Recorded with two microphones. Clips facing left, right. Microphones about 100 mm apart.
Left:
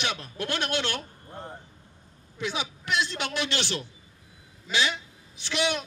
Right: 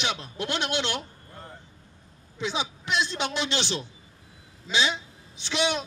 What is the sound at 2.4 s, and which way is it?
A man's voice, 20° right (ahead or behind).